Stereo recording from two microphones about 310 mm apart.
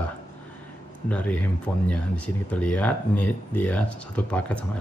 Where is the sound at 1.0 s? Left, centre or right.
Centre.